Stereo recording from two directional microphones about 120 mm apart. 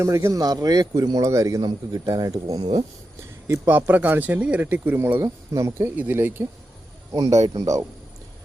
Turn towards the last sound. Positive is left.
turn(degrees=-30)  # may be behind; listen again after turning